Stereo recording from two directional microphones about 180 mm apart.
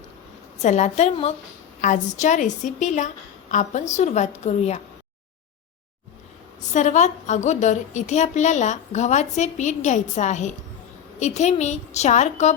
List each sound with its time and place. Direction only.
0.6 s a woman's voice: 40° left (ahead or behind)
6.7 s a woman's voice: 40° left (ahead or behind)